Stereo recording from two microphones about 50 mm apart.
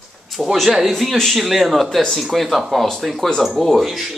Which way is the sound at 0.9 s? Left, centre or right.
Centre.